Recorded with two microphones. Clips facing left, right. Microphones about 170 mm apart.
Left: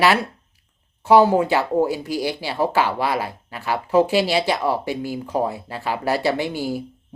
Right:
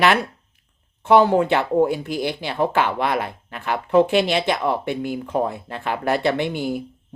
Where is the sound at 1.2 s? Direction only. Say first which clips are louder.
Even; 5° left (ahead or behind).